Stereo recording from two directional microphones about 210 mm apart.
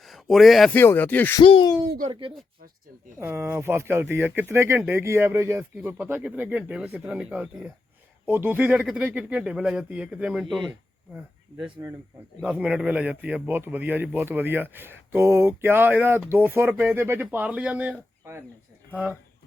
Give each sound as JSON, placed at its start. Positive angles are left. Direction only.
{"t": 0.0, "sound": "speech", "side_deg": 0}
{"t": 1.4, "sound": "speech", "side_deg": 20}
{"t": 2.0, "sound": "speech", "side_deg": -25}
{"t": 3.2, "sound": "speech", "side_deg": -10}
{"t": 11.6, "sound": "speech", "side_deg": -15}
{"t": 18.9, "sound": "speech", "side_deg": 5}